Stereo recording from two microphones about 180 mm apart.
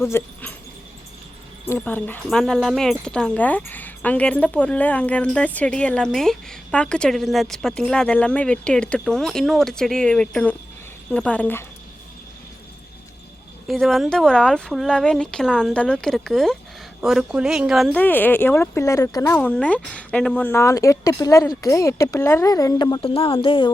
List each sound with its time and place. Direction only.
0.1 s speech: 15° left (ahead or behind)
1.6 s a woman's voice: 10° left (ahead or behind)
13.7 s a woman's voice: centre (ahead or behind)
18.0 s speech: 10° left (ahead or behind)
19.4 s speech: 5° left (ahead or behind); by 23.7 s 30° left (ahead or behind)